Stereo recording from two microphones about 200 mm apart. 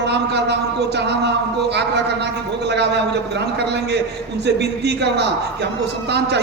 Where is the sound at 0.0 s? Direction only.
55° right (ahead or behind).